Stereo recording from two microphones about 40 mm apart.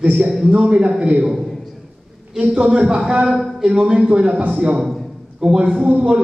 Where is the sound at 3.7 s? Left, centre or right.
Right.